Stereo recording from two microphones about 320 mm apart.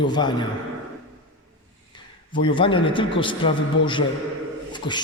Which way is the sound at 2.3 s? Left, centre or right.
Centre.